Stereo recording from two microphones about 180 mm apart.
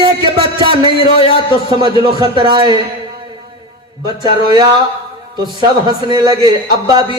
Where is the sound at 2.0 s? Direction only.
30° right (ahead or behind).